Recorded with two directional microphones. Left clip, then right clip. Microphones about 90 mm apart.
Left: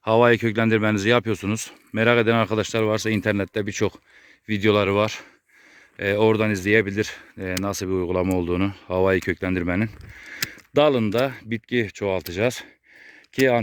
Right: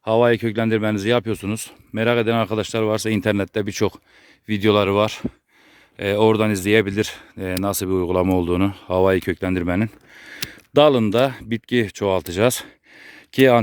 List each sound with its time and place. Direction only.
0.0 s speech: 10° right (ahead or behind); by 3.2 s 30° right (ahead or behind)
3.2 s speech: 40° right (ahead or behind)
7.9 s speech: 60° right (ahead or behind); by 13.6 s 90° right